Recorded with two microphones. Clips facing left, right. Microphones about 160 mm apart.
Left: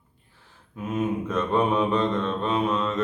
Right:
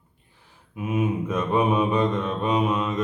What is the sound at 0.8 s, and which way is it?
Mantra, 10° right (ahead or behind).